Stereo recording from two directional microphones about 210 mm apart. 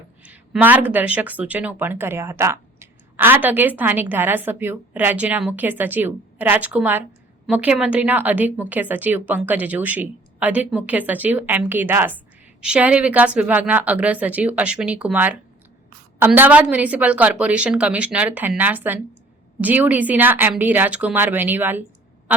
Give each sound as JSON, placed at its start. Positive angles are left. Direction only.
{"t": 0.2, "sound": "speech", "side_deg": -5}
{"t": 22.3, "sound": "quack", "side_deg": -5}